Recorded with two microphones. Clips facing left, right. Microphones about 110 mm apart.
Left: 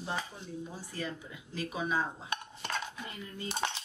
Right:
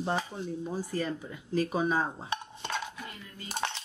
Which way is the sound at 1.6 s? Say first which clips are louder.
Right 6 dB; 40° right (ahead or behind).